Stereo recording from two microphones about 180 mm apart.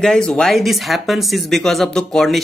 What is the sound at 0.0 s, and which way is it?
Speech, 5° left (ahead or behind).